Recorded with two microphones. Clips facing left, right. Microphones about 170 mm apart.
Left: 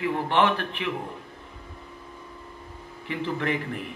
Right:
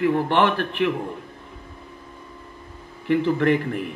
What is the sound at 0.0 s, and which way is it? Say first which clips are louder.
Speech: right 4 dB; 55° right (ahead or behind).